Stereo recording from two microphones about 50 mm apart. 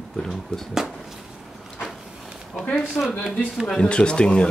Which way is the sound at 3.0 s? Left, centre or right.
Left.